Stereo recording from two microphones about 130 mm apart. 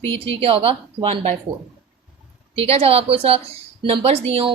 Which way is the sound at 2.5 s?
50° right (ahead or behind).